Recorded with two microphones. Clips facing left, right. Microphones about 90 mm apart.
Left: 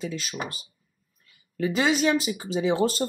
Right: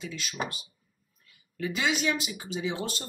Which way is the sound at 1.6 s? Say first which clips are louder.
Left 6 dB; 40° left (ahead or behind).